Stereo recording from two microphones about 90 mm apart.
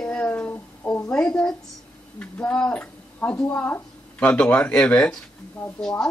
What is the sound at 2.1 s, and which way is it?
Speech, 15° left (ahead or behind).